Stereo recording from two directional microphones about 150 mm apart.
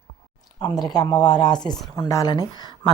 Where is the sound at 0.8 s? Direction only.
25° left (ahead or behind).